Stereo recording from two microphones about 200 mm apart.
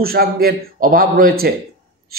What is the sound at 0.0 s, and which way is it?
A man's voice, 50° right (ahead or behind).